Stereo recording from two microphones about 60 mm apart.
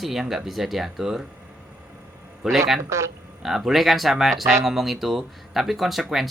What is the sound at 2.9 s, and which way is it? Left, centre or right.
Speech, right.